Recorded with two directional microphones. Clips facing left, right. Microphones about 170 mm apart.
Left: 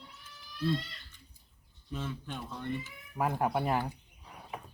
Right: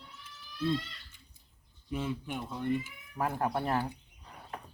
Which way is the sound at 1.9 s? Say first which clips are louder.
Right 4 dB; 10° right (ahead or behind).